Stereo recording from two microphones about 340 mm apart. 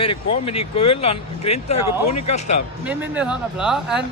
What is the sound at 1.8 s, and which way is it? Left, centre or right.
Speech, left.